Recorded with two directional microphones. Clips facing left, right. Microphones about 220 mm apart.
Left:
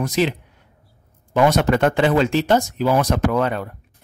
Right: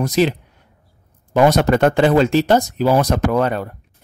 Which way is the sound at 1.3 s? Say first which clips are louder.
Right 3 dB; 40° right (ahead or behind).